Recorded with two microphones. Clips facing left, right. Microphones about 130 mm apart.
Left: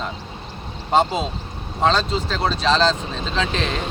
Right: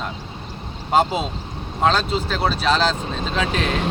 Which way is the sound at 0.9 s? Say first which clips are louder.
Even; 5° right (ahead or behind).